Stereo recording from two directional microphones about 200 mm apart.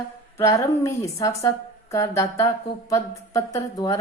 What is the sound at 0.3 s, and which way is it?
A woman's voice, 15° left (ahead or behind).